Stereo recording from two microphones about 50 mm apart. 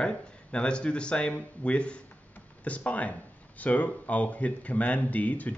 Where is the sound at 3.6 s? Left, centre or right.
Left.